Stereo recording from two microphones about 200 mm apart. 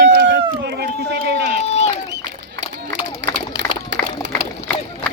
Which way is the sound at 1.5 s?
35° left (ahead or behind).